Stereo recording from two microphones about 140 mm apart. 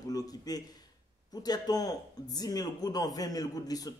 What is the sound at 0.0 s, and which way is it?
A man's voice, 25° left (ahead or behind).